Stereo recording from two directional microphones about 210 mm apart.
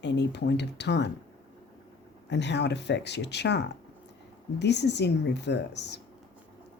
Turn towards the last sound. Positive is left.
turn(degrees=55)  # may be behind; listen again after turning